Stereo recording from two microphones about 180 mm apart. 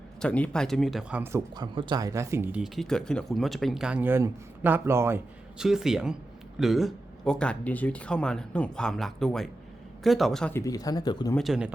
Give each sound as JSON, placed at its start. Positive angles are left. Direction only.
{"t": 0.2, "sound": "speech", "side_deg": 5}
{"t": 1.2, "sound": "speech", "side_deg": -20}
{"t": 5.5, "sound": "speech", "side_deg": -5}
{"t": 10.5, "sound": "speech", "side_deg": 20}
{"t": 11.3, "sound": "speech", "side_deg": 0}